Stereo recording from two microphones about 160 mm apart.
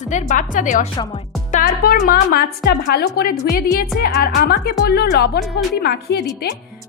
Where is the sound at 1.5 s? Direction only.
65° left (ahead or behind); by 6.5 s 85° left.